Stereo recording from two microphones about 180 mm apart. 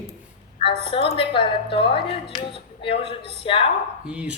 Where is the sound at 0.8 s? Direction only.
30° left (ahead or behind).